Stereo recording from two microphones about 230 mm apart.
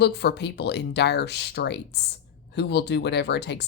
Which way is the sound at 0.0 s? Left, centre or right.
Left.